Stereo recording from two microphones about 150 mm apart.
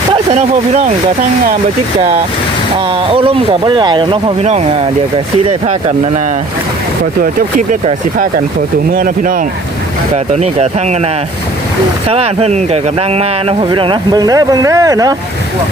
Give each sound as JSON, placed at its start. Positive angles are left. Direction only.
{"t": 2.9, "sound": "speech", "side_deg": -40}
{"t": 7.2, "sound": "speech", "side_deg": -65}
{"t": 8.9, "sound": "speech", "side_deg": -70}
{"t": 10.3, "sound": "speech", "side_deg": -45}